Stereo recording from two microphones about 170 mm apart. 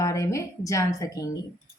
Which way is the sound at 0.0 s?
20° left (ahead or behind).